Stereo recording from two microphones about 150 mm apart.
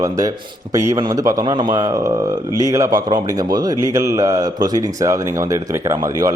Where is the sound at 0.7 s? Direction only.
20° right (ahead or behind).